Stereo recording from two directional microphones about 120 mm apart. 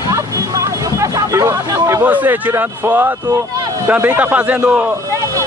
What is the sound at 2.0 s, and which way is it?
Speech, 15° right (ahead or behind).